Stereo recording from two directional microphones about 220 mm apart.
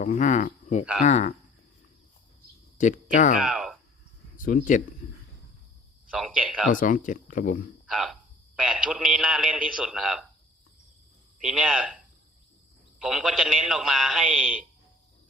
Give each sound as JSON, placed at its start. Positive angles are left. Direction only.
{"t": 0.0, "sound": "speech", "side_deg": 35}
{"t": 2.7, "sound": "speech", "side_deg": 35}
{"t": 3.4, "sound": "a man's voice", "side_deg": -5}
{"t": 4.4, "sound": "speech", "side_deg": 40}
{"t": 5.0, "sound": "a sound", "side_deg": 30}
{"t": 6.1, "sound": "speech", "side_deg": -5}
{"t": 6.7, "sound": "speech", "side_deg": 35}
{"t": 7.9, "sound": "a man's voice", "side_deg": -5}
{"t": 11.4, "sound": "a man's voice", "side_deg": -5}
{"t": 13.0, "sound": "a man's voice", "side_deg": -5}